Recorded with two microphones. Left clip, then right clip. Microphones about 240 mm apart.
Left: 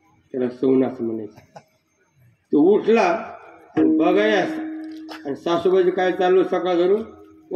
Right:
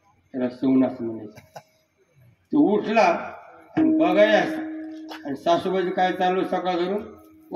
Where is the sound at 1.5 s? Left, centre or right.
Right.